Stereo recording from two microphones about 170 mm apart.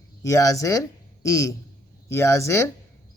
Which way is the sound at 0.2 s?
20° left (ahead or behind).